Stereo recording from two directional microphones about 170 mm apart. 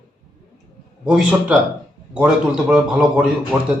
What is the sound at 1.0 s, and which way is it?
A man's voice, 5° right (ahead or behind).